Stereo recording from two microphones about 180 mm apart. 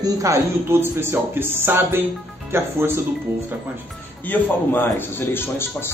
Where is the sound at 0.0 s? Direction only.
20° right (ahead or behind).